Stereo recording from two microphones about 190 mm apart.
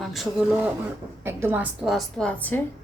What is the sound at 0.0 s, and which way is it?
Speech, centre (ahead or behind).